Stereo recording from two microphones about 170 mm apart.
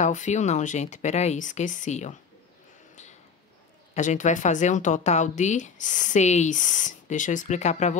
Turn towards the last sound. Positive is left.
turn(degrees=45)  # may be behind; listen again after turning